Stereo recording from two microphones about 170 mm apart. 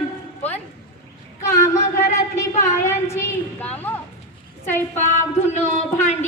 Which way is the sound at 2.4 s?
15° left (ahead or behind).